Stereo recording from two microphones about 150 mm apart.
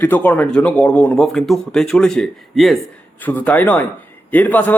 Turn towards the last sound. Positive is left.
turn(degrees=10)  # may be behind; listen again after turning